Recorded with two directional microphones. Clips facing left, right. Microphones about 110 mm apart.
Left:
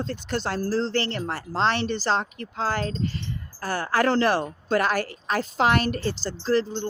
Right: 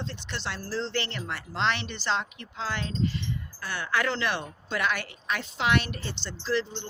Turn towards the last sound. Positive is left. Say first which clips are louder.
# left 6 dB
turn(degrees=40)  # may be behind; listen again after turning